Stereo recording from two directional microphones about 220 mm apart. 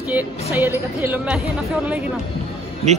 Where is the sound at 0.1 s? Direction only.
10° right (ahead or behind).